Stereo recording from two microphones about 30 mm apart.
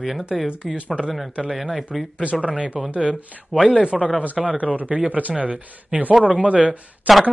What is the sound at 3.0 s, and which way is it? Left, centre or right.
Speech, right.